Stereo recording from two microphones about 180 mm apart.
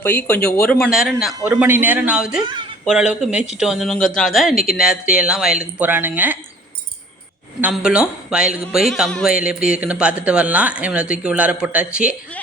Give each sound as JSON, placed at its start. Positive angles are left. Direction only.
{"t": 0.0, "sound": "a man's voice", "side_deg": 10}
{"t": 2.4, "sound": "a woman's voice", "side_deg": -25}
{"t": 2.8, "sound": "a man's voice", "side_deg": -5}
{"t": 7.6, "sound": "a man's voice", "side_deg": -5}